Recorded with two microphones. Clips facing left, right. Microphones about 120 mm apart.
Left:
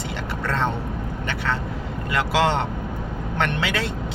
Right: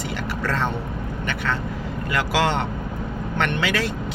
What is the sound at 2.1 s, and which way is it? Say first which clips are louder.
Speech: left 1 dB; 25° left (ahead or behind).